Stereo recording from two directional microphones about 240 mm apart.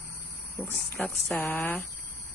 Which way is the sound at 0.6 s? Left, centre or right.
Centre.